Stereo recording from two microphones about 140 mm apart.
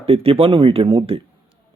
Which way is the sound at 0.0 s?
45° right (ahead or behind).